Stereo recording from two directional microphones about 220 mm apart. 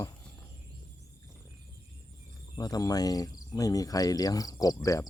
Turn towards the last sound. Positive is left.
turn(degrees=15)  # may be behind; listen again after turning